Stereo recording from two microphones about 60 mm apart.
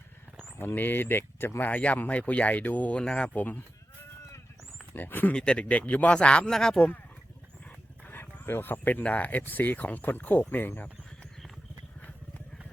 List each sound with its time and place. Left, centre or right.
0.6 s speech: left
1.7 s speech: left
3.0 s speech: centre
4.9 s speech: left
5.3 s speech: centre
8.0 s speech: left